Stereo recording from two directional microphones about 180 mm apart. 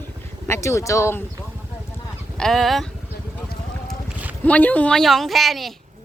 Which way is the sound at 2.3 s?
Centre (ahead or behind).